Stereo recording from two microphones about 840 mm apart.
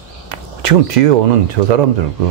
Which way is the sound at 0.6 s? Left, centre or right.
Right.